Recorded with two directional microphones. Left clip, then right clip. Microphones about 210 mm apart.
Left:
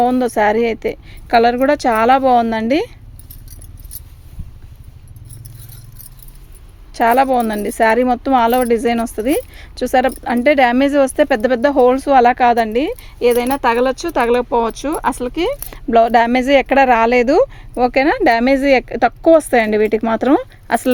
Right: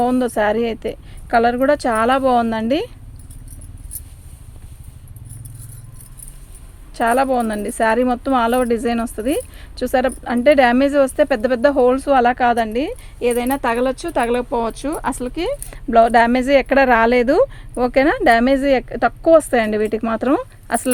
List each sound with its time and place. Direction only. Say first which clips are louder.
0.0 s speech: left 3 dB; 35° left (ahead or behind)
6.9 s speech: left 4 dB; 35° left (ahead or behind)